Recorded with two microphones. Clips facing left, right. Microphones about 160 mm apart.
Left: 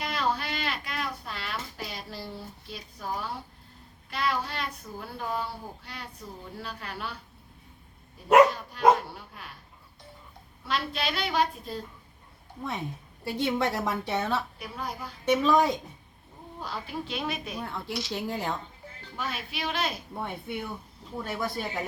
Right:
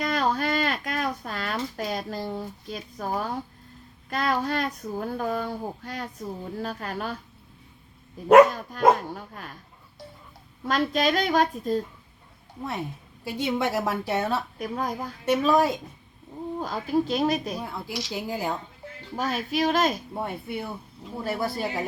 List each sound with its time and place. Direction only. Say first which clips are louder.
0.0 s a sound: right 5 dB; 45° right (ahead or behind)
4.1 s a child's voice: right 5 dB; 45° right (ahead or behind)
8.3 s a child's voice: right 4 dB; 45° right (ahead or behind)
10.7 s a child's voice: right 8 dB; 45° right (ahead or behind)
13.2 s a woman's voice: right 1 dB; 5° right (ahead or behind)
14.6 s a child's voice: right 7 dB; 45° right (ahead or behind)
15.2 s a woman's voice: right 1 dB; 5° right (ahead or behind)
16.6 s a woman's voice: right 10 dB; 45° right (ahead or behind)
17.6 s a woman's voice: right 1 dB; 5° right (ahead or behind)
19.1 s a woman's voice: right 9 dB; 40° right (ahead or behind)
20.1 s speech: right 3 dB; 5° right (ahead or behind)